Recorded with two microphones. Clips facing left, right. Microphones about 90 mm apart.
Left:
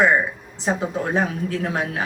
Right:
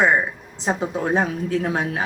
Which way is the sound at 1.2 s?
20° right (ahead or behind).